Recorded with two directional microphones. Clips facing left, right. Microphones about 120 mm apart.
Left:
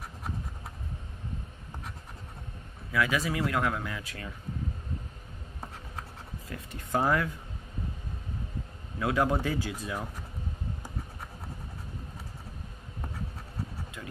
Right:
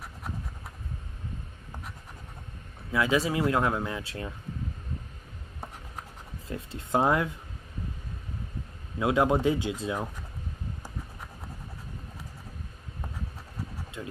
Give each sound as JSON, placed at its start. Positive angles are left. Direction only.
{"t": 2.9, "sound": "speech", "side_deg": -25}
{"t": 6.4, "sound": "speech", "side_deg": -25}
{"t": 9.0, "sound": "speech", "side_deg": -20}
{"t": 14.0, "sound": "a sound", "side_deg": -25}